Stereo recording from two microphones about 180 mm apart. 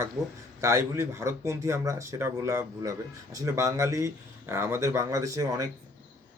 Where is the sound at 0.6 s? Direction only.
15° right (ahead or behind).